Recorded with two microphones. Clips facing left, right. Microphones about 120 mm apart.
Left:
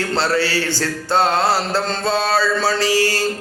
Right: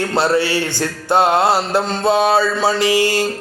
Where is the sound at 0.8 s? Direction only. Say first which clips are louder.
Right 3 dB; 15° right (ahead or behind).